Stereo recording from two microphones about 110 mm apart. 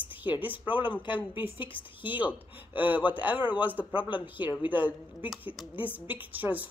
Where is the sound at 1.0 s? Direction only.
45° left (ahead or behind).